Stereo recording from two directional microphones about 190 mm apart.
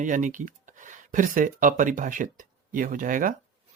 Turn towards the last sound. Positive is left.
turn(degrees=-45)  # may be behind; listen again after turning